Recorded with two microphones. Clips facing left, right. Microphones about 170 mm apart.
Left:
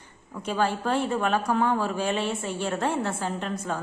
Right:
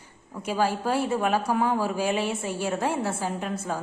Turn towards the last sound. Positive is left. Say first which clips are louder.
# even
turn(degrees=-10)  # may be behind; listen again after turning